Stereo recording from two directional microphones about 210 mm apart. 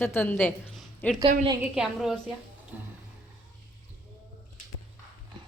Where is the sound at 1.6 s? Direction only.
Centre (ahead or behind).